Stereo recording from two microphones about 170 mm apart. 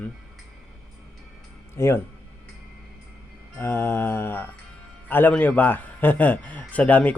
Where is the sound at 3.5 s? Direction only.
15° left (ahead or behind).